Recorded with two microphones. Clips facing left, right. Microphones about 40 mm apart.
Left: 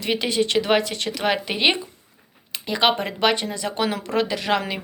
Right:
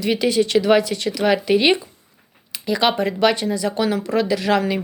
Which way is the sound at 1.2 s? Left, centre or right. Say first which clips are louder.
Right 5 dB; centre.